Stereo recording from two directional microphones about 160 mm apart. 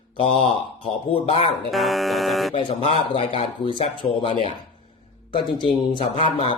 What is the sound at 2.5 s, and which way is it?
Speech, 35° left (ahead or behind).